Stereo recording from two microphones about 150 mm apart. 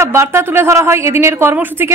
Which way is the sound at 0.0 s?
20° right (ahead or behind).